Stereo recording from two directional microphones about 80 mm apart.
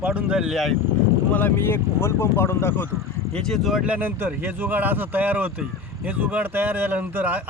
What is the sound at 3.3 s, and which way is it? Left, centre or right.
Speech, centre.